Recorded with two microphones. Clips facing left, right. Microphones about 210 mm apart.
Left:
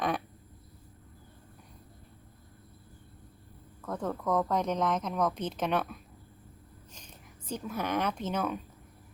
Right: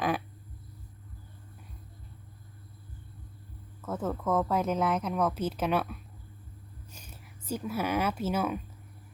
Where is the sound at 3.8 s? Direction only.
5° right (ahead or behind).